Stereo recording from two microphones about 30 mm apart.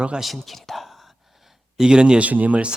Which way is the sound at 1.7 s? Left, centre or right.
Right.